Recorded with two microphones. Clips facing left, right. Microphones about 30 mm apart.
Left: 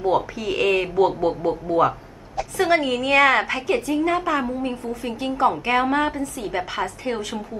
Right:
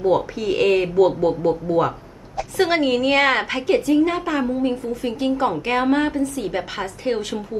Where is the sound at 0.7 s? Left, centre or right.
Left.